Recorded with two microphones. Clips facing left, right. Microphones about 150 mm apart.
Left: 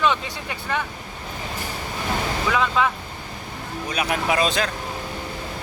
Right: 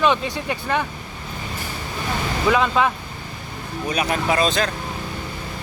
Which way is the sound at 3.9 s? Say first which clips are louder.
Right 2 dB; 5° left (ahead or behind).